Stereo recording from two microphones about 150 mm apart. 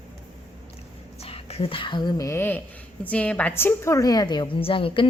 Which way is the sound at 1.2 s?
40° left (ahead or behind).